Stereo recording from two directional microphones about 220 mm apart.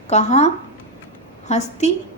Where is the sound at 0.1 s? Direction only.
30° left (ahead or behind).